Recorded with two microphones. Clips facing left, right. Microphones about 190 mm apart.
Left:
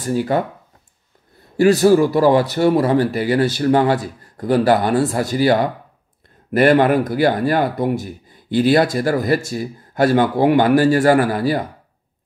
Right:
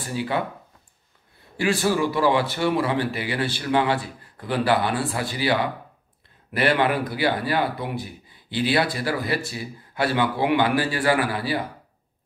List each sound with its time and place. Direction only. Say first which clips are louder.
0.0 s speech: left 7 dB; 45° left (ahead or behind)
1.6 s speech: left 10 dB; 40° left (ahead or behind)